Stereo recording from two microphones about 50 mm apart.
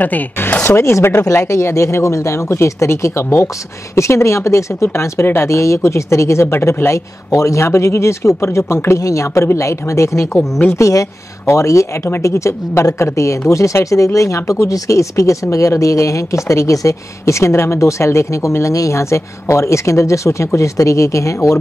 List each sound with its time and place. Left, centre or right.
0.0 s speech: left
0.7 s speech: left
1.2 s speech: left
3.9 s speech: left
5.2 s speech: left
6.5 s speech: left
7.6 s speech: left
10.7 s speech: left
13.5 s speech: left